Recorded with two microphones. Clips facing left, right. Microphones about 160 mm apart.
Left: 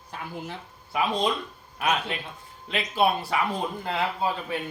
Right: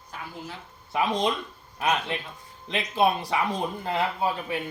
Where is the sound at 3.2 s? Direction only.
15° right (ahead or behind).